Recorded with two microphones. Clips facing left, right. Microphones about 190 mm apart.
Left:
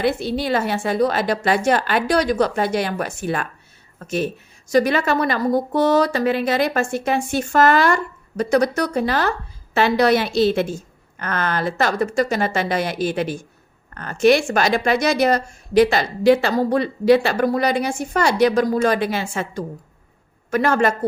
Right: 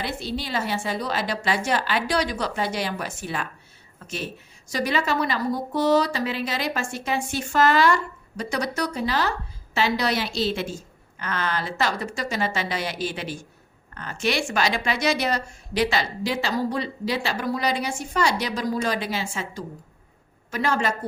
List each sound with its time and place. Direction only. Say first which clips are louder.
0.0 s a woman's voice: left 9 dB; 55° left (ahead or behind)